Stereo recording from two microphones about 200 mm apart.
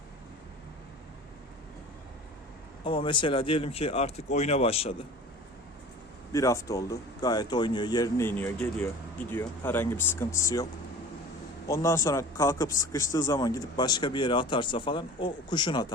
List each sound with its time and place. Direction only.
2.8 s speech: 25° left (ahead or behind)
6.3 s speech: 15° left (ahead or behind)
11.7 s speech: 15° left (ahead or behind)